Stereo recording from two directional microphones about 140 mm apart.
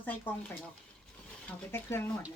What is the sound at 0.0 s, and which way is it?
Speech, 10° left (ahead or behind).